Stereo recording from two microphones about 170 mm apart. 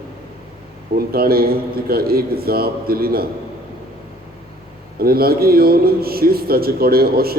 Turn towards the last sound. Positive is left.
turn(degrees=-65)  # may be behind; listen again after turning